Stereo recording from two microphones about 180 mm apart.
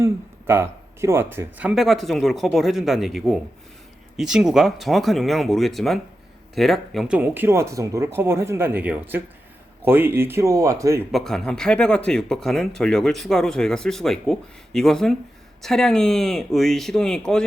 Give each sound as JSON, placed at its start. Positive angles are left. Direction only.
{"t": 0.0, "sound": "speech", "side_deg": -15}
{"t": 11.1, "sound": "speech", "side_deg": 5}